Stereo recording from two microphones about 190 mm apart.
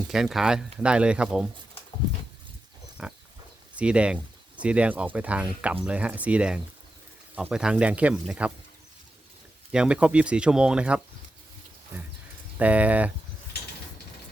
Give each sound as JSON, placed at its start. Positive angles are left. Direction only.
{"t": 0.1, "sound": "speech", "side_deg": 0}
{"t": 2.0, "sound": "a sound", "side_deg": -20}
{"t": 3.0, "sound": "pig", "side_deg": -5}
{"t": 3.8, "sound": "speech", "side_deg": -5}
{"t": 9.7, "sound": "speech", "side_deg": -5}
{"t": 12.5, "sound": "speech", "side_deg": -5}